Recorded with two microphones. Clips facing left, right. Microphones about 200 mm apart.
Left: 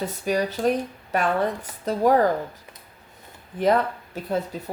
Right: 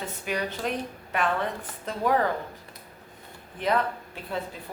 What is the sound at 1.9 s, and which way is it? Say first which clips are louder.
Speech: left 6 dB; 40° left (ahead or behind).